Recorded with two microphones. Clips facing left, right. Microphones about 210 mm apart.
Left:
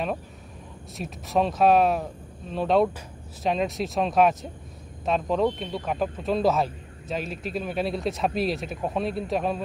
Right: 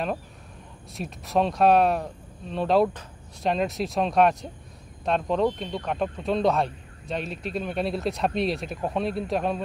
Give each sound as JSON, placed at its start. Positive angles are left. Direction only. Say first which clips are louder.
{"t": 0.9, "sound": "speech", "louder": "even", "side_deg": 0}